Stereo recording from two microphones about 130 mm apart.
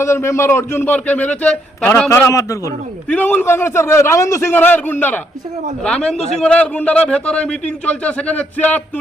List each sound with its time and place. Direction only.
0.0 s a man's voice: 20° left (ahead or behind)
2.0 s a man's voice: 20° left (ahead or behind)
3.1 s a man's voice: 10° left (ahead or behind)